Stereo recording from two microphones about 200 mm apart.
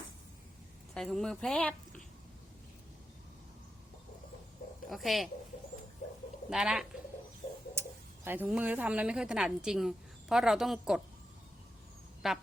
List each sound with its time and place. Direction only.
0.9 s a woman's voice: centre (ahead or behind)
4.9 s a woman's voice: centre (ahead or behind)
6.5 s a woman's voice: centre (ahead or behind)
12.2 s a woman's voice: centre (ahead or behind)